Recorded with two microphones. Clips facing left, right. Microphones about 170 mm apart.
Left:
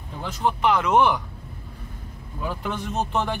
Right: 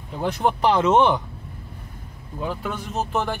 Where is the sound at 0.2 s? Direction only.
55° right (ahead or behind).